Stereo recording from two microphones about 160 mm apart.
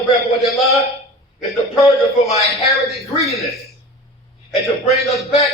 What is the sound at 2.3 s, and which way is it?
Speech, 40° left (ahead or behind).